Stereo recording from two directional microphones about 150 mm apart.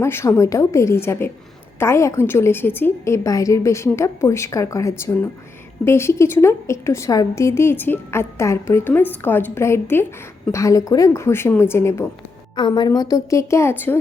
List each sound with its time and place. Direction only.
0.0 s a woman's voice: 15° left (ahead or behind)
12.5 s a woman's voice: 30° left (ahead or behind); by 14.0 s 15° left (ahead or behind)